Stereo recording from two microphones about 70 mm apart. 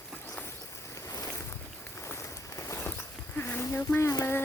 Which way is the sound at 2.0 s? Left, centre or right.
Left.